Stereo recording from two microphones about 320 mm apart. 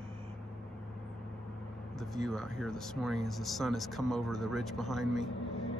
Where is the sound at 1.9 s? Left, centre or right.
Centre.